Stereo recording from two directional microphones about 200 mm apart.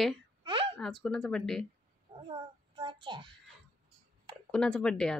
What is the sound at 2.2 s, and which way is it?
Child singing, 25° right (ahead or behind).